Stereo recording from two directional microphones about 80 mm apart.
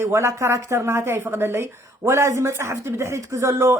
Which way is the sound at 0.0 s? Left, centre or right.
Right.